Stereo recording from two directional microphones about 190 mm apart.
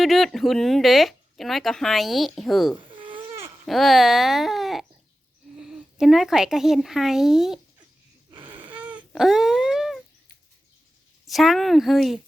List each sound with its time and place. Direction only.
0.0 s speech: centre (ahead or behind)
2.8 s insect: 25° right (ahead or behind)
3.7 s speech: centre (ahead or behind)
8.4 s a sound: 10° right (ahead or behind)
11.3 s speech: centre (ahead or behind)